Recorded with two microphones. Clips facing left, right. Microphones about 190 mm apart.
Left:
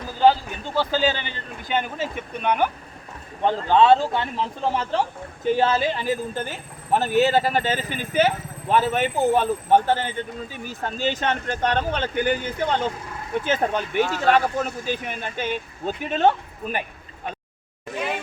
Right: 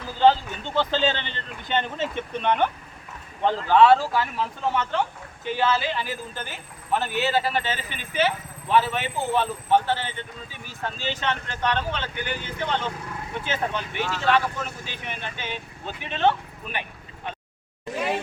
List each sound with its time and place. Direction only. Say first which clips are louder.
0.2 s speech: left 1 dB; 10° left (ahead or behind)
3.4 s speech: even; 20° left (ahead or behind); by 16.8 s 45° left (ahead or behind)